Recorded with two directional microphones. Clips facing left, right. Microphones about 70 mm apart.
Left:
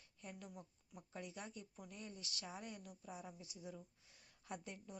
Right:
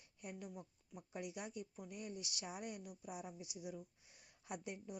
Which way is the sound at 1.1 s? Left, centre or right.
Centre.